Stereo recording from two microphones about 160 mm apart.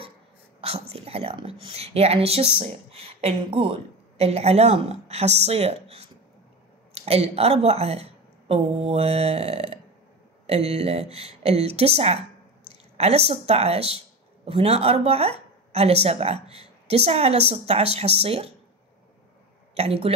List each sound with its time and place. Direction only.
0.6 s a woman's voice: 40° right (ahead or behind)
19.7 s speech: 35° right (ahead or behind)